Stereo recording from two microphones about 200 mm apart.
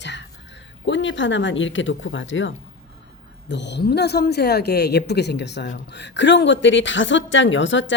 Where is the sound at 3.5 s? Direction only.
60° left (ahead or behind).